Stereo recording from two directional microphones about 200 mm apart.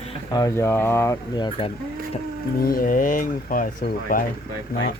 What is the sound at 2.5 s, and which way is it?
Speech, 45° left (ahead or behind).